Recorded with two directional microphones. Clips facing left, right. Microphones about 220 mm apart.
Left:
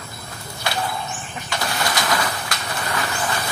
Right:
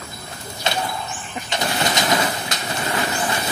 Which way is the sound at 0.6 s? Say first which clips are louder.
Right 2 dB; 20° right (ahead or behind).